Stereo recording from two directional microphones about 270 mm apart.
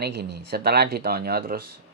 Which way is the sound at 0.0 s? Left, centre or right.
Right.